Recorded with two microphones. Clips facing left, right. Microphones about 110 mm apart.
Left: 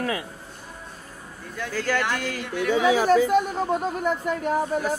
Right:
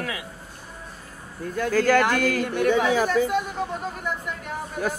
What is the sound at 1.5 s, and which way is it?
Speech, 50° right (ahead or behind).